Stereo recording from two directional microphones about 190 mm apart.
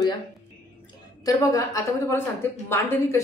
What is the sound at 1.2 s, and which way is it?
Speech, 20° left (ahead or behind).